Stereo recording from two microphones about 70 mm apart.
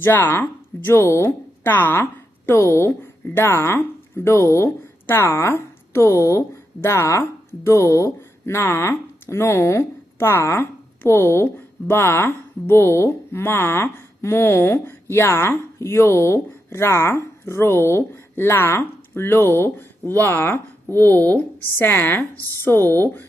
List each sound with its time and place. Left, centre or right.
0.0 s speech: left
2.5 s speech: left